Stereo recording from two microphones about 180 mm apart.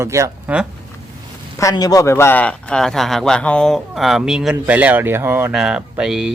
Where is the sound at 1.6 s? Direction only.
20° left (ahead or behind); by 5.5 s 15° right (ahead or behind).